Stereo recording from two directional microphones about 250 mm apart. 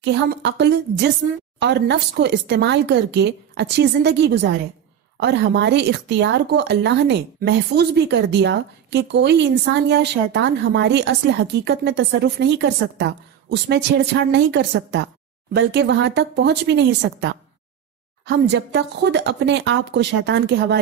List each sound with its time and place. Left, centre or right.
0.0 s speech: right